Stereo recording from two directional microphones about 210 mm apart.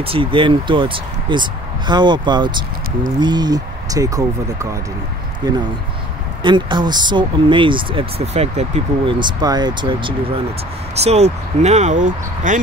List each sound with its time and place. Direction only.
0.0 s speech: 25° right (ahead or behind)